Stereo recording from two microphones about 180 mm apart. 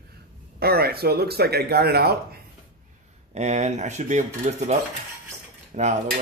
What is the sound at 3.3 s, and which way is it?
Speech, 40° right (ahead or behind).